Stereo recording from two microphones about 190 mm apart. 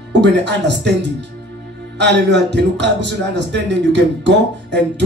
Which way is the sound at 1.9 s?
65° right (ahead or behind).